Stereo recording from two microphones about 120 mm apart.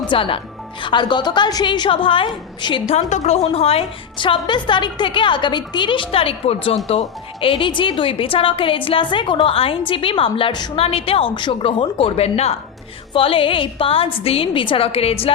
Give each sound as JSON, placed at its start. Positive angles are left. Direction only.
{"t": 0.1, "sound": "a woman's voice", "side_deg": 45}
{"t": 2.9, "sound": "a woman's voice", "side_deg": 65}
{"t": 10.8, "sound": "a woman's voice", "side_deg": 55}
{"t": 13.1, "sound": "a woman's voice", "side_deg": 50}